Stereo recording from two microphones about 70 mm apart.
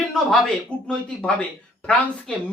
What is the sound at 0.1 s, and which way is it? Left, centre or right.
Speech, centre.